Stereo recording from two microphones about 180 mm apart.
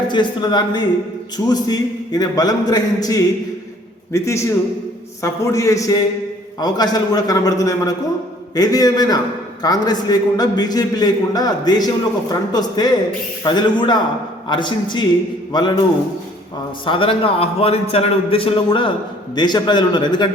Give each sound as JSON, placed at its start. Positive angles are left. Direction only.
{"t": 0.1, "sound": "a man's voice", "side_deg": 25}
{"t": 16.8, "sound": "a man's voice", "side_deg": 30}